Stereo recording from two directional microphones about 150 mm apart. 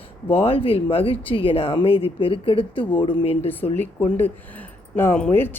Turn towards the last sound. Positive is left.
turn(degrees=10)  # may be behind; listen again after turning